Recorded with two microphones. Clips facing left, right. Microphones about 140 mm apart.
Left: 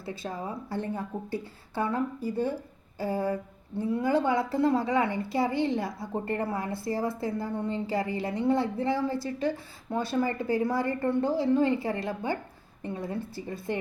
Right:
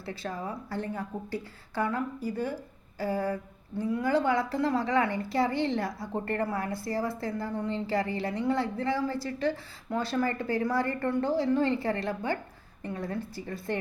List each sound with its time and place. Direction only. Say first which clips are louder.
0.0 s a woman's voice: even; 15° left (ahead or behind)